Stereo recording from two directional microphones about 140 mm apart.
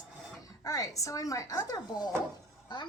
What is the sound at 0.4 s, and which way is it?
A woman's voice, 25° left (ahead or behind).